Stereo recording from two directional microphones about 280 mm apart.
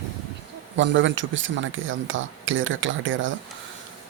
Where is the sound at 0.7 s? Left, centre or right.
Right.